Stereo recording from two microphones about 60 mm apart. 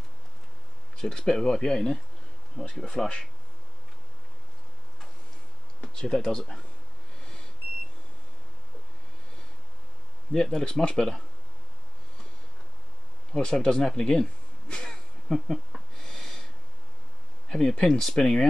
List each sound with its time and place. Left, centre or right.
0.9 s speech: centre
5.8 s speech: centre
10.3 s speech: centre
13.3 s speech: centre
14.7 s a sound: centre
17.5 s speech: centre